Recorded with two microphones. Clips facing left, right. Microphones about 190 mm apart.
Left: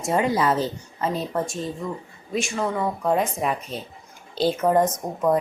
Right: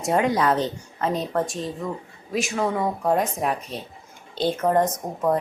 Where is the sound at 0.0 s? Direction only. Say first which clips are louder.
Right 1 dB; centre (ahead or behind).